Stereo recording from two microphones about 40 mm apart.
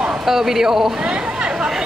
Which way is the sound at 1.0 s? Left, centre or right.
Centre.